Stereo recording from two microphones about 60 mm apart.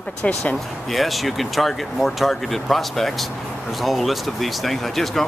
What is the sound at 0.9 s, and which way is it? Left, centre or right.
Speech, centre.